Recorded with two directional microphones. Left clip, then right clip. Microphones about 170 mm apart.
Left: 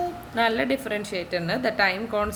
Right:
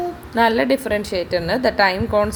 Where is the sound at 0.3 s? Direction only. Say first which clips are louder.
Right 7 dB; 30° right (ahead or behind).